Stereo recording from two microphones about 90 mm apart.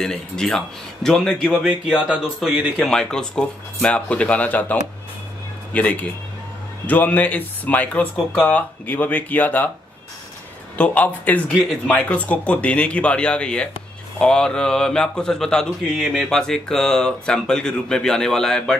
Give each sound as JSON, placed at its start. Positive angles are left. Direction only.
{"t": 0.0, "sound": "speech", "side_deg": 5}
{"t": 1.7, "sound": "speech", "side_deg": -10}
{"t": 2.8, "sound": "speech", "side_deg": 10}
{"t": 10.8, "sound": "speech", "side_deg": 15}
{"t": 15.9, "sound": "speech", "side_deg": -10}
{"t": 16.3, "sound": "speech", "side_deg": 5}